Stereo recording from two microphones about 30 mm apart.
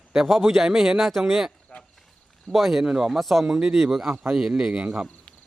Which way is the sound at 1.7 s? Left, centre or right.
Left.